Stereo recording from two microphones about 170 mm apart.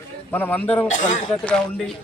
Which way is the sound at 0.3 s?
10° left (ahead or behind).